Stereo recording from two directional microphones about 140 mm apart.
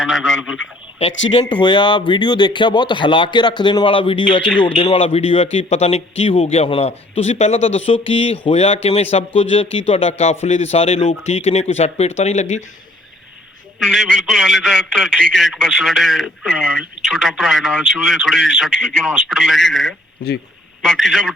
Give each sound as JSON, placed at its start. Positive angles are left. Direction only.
{"t": 0.0, "sound": "a sound", "side_deg": 0}
{"t": 1.5, "sound": "speech", "side_deg": 35}
{"t": 13.7, "sound": "a man's voice", "side_deg": 0}